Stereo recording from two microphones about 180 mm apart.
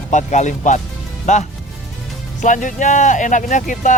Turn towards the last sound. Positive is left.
turn(degrees=45)  # may be behind; listen again after turning